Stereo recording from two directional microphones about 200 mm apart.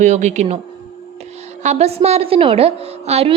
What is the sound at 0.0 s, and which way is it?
Speech, 35° right (ahead or behind).